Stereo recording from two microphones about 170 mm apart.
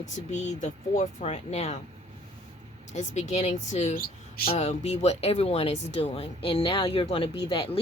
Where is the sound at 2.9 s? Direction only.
45° left (ahead or behind); by 7.8 s 25° left (ahead or behind).